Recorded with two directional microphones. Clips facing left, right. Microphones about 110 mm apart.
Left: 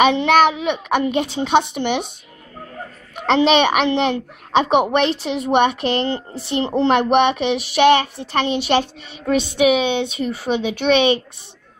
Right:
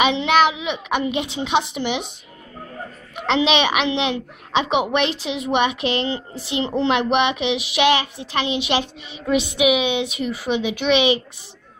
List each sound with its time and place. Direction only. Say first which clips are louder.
0.0 s a child's voice: left 3 dB; 45° left (ahead or behind)
3.3 s a child's voice: left 4 dB; 45° left (ahead or behind)